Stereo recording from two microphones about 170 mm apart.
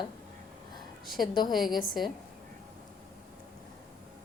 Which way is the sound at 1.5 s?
Centre (ahead or behind).